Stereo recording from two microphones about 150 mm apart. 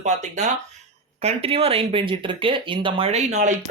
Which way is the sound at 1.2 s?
40° right (ahead or behind).